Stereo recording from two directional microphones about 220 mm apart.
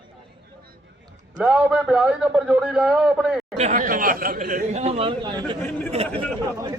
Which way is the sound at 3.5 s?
30° right (ahead or behind).